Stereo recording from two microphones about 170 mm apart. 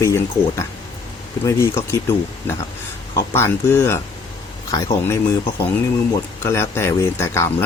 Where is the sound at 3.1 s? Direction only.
15° left (ahead or behind).